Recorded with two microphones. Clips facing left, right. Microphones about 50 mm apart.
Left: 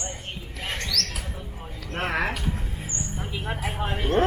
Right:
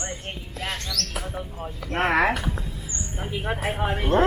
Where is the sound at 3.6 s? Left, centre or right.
Right.